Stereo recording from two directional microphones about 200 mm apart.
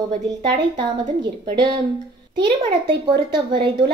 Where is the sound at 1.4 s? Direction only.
25° right (ahead or behind).